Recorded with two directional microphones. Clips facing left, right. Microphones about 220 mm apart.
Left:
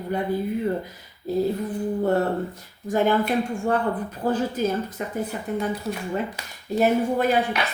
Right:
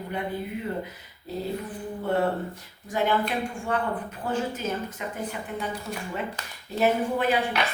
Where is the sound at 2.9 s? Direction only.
45° left (ahead or behind).